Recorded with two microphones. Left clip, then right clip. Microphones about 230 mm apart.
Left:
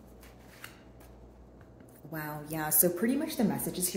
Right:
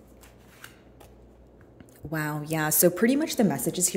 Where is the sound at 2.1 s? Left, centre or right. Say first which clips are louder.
Right 8 dB; right.